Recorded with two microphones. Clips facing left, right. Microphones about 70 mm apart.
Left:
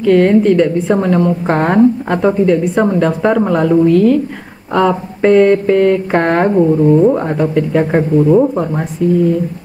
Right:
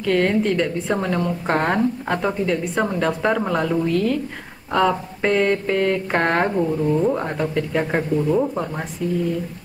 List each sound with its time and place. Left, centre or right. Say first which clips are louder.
0.0 s speech: left 10 dB; centre
6.5 s speech: left 10 dB; left
7.2 s speech: left 8 dB; centre
8.2 s speech: left 10 dB; left